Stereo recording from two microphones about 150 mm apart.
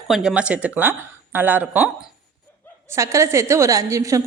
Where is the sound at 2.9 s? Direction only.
20° right (ahead or behind).